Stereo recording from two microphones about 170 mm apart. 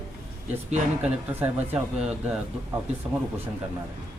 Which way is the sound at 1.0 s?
10° right (ahead or behind).